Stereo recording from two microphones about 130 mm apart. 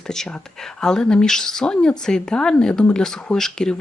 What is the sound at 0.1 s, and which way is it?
Speech, 5° left (ahead or behind).